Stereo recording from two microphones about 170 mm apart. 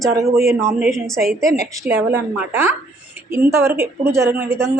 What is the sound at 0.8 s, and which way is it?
A woman's voice, centre (ahead or behind).